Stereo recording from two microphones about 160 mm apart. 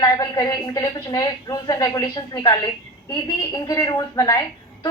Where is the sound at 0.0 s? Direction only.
20° left (ahead or behind).